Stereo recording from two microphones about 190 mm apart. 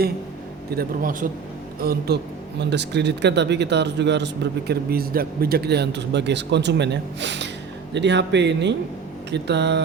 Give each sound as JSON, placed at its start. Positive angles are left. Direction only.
{"t": 0.8, "sound": "a man's voice", "side_deg": -45}
{"t": 2.6, "sound": "speech", "side_deg": -65}